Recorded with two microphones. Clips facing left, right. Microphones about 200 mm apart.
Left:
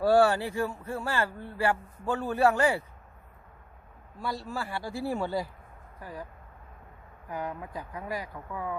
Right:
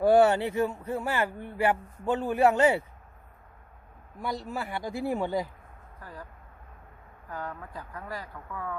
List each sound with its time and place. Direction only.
0.0 s speech: 20° right (ahead or behind)
4.2 s speech: 20° right (ahead or behind)
6.0 s speech: 10° left (ahead or behind)
7.3 s speech: 15° left (ahead or behind)